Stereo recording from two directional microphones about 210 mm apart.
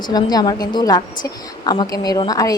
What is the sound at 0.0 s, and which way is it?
A woman's voice, 20° left (ahead or behind).